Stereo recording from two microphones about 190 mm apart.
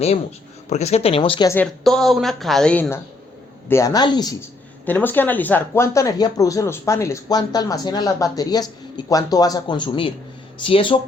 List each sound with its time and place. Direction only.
0.7 s speech: 35° left (ahead or behind)
1.5 s a woman's voice: centre (ahead or behind); by 4.4 s 20° left (ahead or behind)
4.9 s speech: 10° left (ahead or behind); by 11.0 s 25° left (ahead or behind)